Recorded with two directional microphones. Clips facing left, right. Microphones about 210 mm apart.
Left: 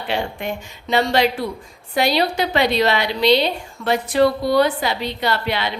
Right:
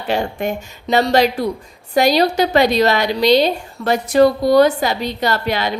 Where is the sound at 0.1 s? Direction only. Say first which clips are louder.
Right 5 dB; 45° right (ahead or behind).